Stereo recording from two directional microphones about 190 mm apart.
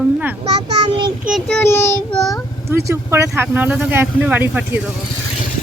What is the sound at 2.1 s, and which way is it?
Child singing, centre (ahead or behind).